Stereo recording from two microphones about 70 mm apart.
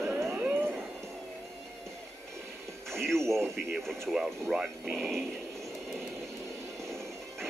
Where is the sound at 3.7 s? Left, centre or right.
Centre.